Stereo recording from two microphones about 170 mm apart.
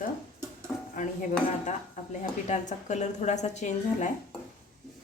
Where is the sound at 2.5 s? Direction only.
45° left (ahead or behind).